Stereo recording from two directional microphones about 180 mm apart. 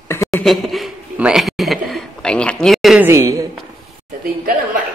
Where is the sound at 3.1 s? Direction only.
20° right (ahead or behind).